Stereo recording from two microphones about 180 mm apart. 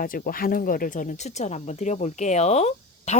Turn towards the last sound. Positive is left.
turn(degrees=35)  # may be behind; listen again after turning